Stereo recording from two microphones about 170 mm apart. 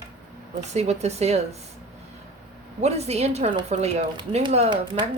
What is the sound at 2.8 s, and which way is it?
A woman's voice, 40° right (ahead or behind).